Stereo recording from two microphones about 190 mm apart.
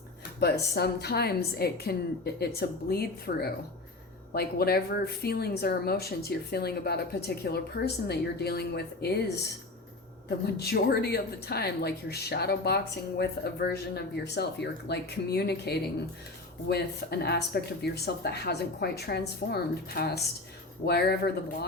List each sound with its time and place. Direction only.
0.7 s a woman's voice: 60° left (ahead or behind)